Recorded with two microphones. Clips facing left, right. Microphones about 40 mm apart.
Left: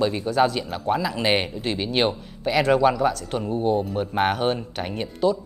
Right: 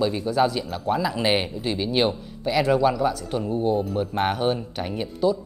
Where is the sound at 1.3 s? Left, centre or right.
Centre.